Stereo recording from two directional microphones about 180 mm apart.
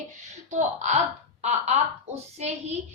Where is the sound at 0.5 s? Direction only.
40° right (ahead or behind).